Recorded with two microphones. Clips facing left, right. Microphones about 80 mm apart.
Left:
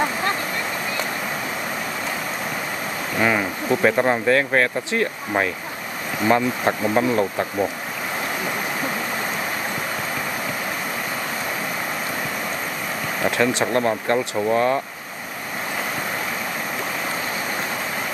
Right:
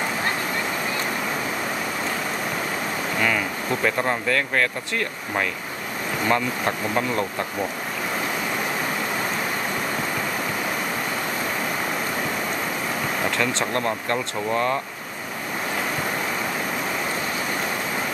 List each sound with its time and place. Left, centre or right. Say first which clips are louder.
3.2 s speech: left 5 dB; left
6.2 s speech: left 4 dB; centre
13.6 s speech: left 4 dB; centre